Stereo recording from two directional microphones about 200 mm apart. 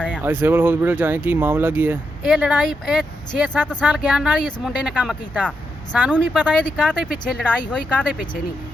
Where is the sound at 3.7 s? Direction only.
20° left (ahead or behind).